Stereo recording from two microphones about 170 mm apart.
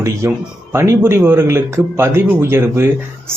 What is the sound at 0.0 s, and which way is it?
Speech, 15° right (ahead or behind).